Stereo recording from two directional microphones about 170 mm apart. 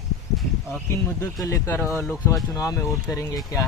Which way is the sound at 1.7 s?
15° left (ahead or behind).